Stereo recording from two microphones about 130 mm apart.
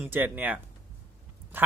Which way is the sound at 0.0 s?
15° right (ahead or behind).